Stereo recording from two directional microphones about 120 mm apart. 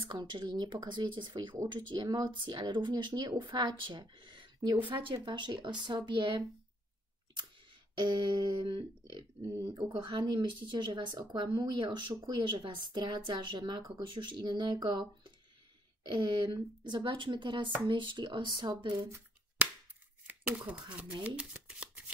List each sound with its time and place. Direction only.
0.1 s speech: 40° right (ahead or behind)
8.0 s speech: 35° right (ahead or behind)
9.5 s speech: 25° right (ahead or behind)
20.2 s speech: 15° right (ahead or behind)
21.4 s shuffling cards: 10° right (ahead or behind)